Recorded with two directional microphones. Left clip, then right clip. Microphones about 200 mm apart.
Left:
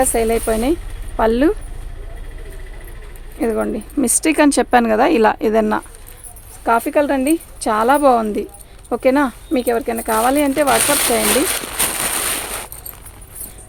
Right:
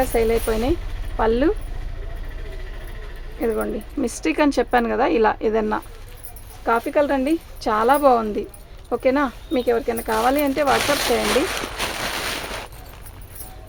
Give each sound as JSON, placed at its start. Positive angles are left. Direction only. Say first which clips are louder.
{"t": 0.0, "sound": "speech", "louder": "left 3 dB", "side_deg": 50}
{"t": 3.4, "sound": "speech", "louder": "left 4 dB", "side_deg": 50}
{"t": 6.7, "sound": "speech", "louder": "left 4 dB", "side_deg": 45}